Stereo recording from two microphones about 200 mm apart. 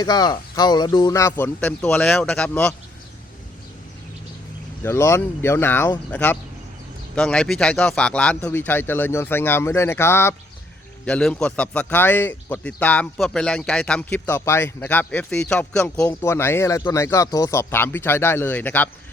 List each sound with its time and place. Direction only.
0.0 s speech: 20° left (ahead or behind)
4.8 s speech: 15° left (ahead or behind)